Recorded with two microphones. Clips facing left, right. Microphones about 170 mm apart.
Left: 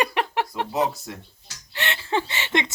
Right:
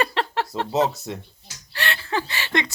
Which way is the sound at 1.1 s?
20° right (ahead or behind).